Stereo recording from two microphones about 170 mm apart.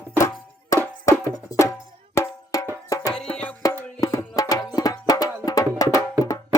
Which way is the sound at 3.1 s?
5° left (ahead or behind).